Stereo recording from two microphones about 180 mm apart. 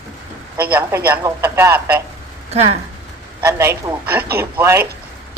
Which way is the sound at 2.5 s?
35° right (ahead or behind).